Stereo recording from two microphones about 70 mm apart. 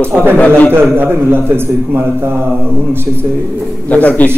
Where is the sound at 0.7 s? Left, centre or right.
Right.